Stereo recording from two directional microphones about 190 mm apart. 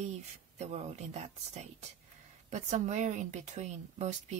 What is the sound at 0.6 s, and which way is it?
Speech, 35° right (ahead or behind).